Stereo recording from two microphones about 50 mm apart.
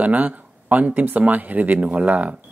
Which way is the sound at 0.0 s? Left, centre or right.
Right.